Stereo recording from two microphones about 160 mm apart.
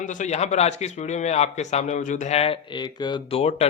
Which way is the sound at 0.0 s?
50° left (ahead or behind).